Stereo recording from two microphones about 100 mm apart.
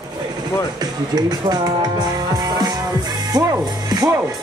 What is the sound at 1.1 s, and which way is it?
Speech, 45° right (ahead or behind).